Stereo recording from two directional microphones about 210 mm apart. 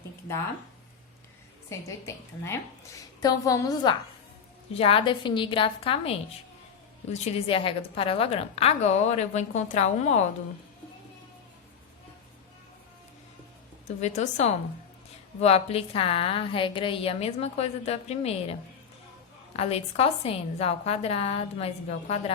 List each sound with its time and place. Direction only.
2.0 s a woman's voice: 15° left (ahead or behind); by 10.2 s 30° left (ahead or behind)
13.8 s a woman's voice: 35° left (ahead or behind)
19.5 s a woman's voice: 30° left (ahead or behind)